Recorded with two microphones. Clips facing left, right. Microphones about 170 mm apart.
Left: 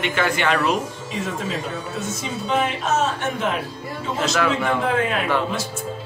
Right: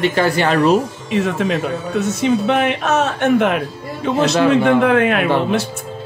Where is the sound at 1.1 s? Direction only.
70° right (ahead or behind).